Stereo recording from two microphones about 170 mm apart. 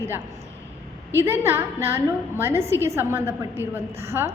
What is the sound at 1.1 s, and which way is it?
A woman's voice, 15° right (ahead or behind).